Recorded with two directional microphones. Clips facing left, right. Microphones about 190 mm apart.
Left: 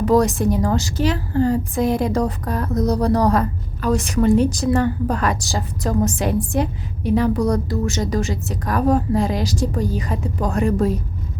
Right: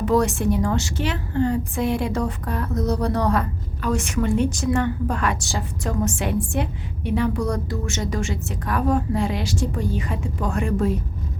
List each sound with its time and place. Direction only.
0.0 s a woman's voice: 40° left (ahead or behind)